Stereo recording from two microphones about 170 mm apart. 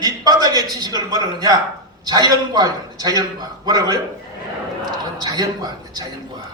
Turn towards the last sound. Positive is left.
turn(degrees=-25)  # may be behind; listen again after turning